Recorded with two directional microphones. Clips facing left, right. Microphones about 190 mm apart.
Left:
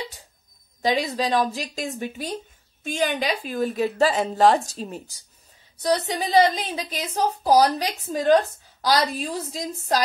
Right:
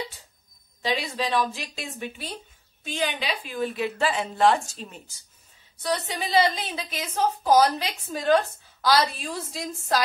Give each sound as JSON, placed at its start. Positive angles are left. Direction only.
{"t": 0.9, "sound": "a woman's voice", "side_deg": 40}